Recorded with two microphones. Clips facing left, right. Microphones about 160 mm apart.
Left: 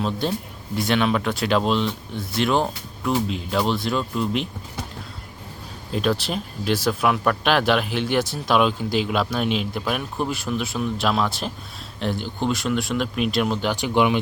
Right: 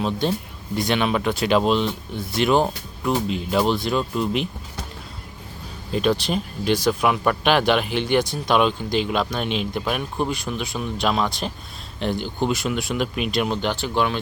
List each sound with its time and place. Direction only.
0.0 s speech: centre (ahead or behind)
5.9 s speech: centre (ahead or behind)
13.7 s speech: 15° left (ahead or behind)